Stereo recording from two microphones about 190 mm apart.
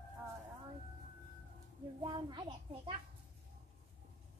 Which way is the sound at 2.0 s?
25° right (ahead or behind).